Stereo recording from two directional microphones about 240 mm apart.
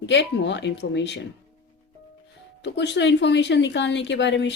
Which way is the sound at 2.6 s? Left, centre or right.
Left.